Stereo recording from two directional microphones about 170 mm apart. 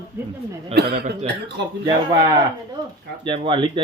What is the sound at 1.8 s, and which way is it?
Speech, 20° right (ahead or behind).